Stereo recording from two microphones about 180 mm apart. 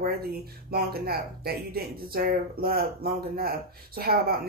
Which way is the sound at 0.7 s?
60° right (ahead or behind).